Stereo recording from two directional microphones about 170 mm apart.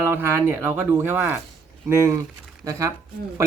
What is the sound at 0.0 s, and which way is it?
Speech, 15° right (ahead or behind).